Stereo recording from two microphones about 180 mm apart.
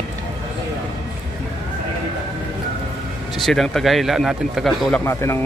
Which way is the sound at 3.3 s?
Centre (ahead or behind).